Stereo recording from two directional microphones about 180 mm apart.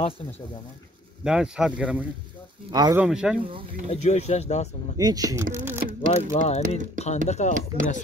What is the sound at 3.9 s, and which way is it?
Speech, 35° left (ahead or behind).